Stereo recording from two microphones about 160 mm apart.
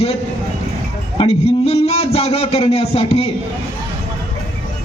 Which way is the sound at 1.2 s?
40° left (ahead or behind).